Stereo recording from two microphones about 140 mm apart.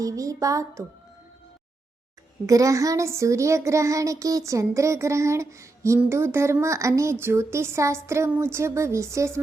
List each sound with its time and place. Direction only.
0.0 s child singing: 25° right (ahead or behind)
2.5 s child singing: 25° right (ahead or behind)